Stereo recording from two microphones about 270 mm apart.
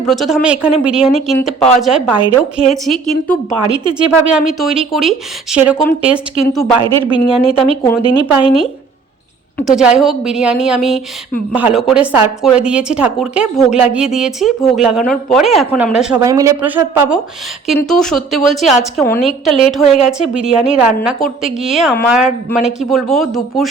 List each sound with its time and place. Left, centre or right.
0.0 s a woman's voice: centre
2.1 s a woman's voice: centre
2.8 s a woman's voice: centre
16.2 s a woman's voice: centre